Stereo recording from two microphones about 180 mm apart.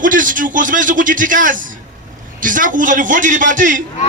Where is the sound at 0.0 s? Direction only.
45° right (ahead or behind).